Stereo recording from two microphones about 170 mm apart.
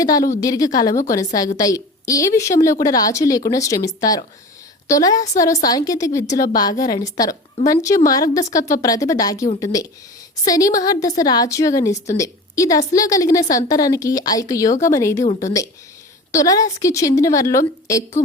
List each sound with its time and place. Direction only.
0.0 s a woman's voice: 20° left (ahead or behind)
16.3 s a woman's voice: 20° left (ahead or behind)